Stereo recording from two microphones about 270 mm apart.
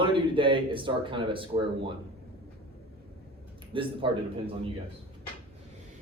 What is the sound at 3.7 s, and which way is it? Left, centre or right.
Speech, centre.